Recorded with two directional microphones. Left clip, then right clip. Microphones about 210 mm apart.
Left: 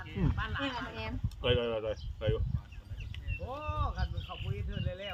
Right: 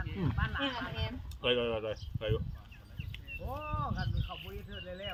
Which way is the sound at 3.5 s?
50° left (ahead or behind).